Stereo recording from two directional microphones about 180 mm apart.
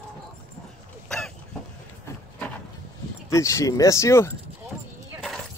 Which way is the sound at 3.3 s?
15° left (ahead or behind).